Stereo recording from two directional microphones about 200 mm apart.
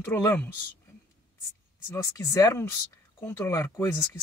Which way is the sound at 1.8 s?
15° left (ahead or behind).